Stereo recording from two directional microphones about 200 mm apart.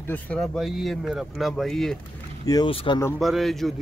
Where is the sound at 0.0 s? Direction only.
5° left (ahead or behind).